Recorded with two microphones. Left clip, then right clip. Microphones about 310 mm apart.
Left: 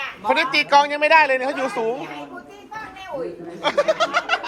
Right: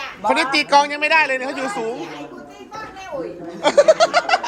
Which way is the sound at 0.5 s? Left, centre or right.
Centre.